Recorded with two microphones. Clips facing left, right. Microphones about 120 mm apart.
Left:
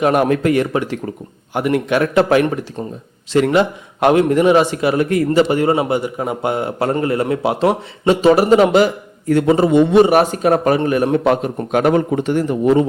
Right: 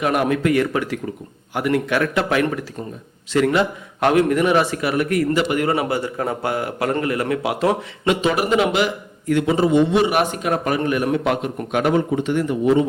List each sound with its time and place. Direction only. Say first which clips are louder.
0.0 s a man's voice: left 4 dB; 35° left (ahead or behind)
0.5 s a man's voice: left 2 dB; 25° left (ahead or behind)